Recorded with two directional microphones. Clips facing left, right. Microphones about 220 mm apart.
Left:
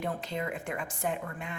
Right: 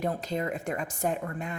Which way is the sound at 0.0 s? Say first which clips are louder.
Right 4 dB; 40° right (ahead or behind).